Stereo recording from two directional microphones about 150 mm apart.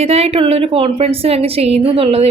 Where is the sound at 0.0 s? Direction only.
45° right (ahead or behind).